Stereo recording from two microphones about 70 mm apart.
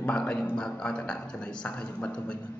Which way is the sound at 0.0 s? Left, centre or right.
Centre.